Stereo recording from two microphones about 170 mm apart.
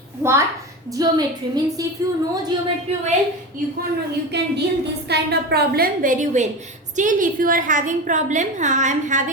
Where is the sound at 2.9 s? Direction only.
35° right (ahead or behind).